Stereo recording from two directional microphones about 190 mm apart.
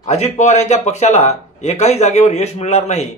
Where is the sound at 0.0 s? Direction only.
35° left (ahead or behind).